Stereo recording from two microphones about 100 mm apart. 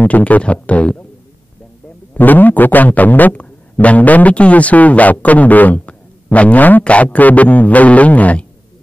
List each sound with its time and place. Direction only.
0.0 s a man's voice: 15° left (ahead or behind)
2.1 s a man's voice: 20° left (ahead or behind)